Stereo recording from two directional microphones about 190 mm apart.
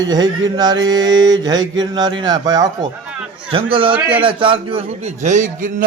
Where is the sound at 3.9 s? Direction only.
10° right (ahead or behind).